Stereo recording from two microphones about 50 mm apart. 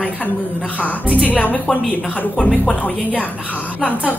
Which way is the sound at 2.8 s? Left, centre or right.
Left.